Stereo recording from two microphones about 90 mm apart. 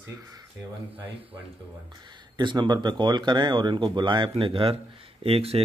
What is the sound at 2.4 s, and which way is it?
Speech, 55° right (ahead or behind).